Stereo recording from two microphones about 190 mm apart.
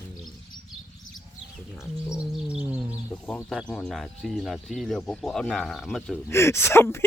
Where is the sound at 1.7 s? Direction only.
5° right (ahead or behind).